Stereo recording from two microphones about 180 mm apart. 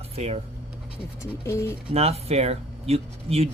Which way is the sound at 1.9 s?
35° right (ahead or behind).